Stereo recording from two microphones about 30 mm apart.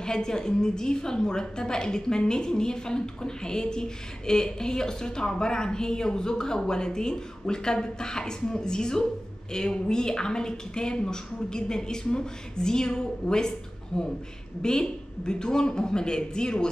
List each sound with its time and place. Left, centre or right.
0.0 s a woman's voice: left